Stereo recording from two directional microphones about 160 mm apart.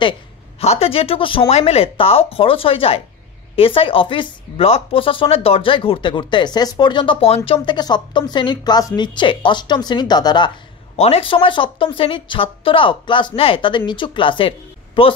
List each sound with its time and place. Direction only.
0.6 s speech: 40° left (ahead or behind)
11.0 s speech: 40° left (ahead or behind)